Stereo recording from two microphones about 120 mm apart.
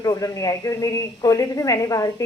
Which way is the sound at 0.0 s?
30° left (ahead or behind).